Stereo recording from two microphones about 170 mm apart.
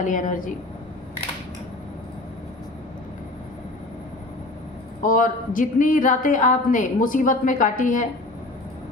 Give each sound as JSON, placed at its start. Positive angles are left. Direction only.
{"t": 0.0, "sound": "speech", "side_deg": 50}
{"t": 5.0, "sound": "speech", "side_deg": 55}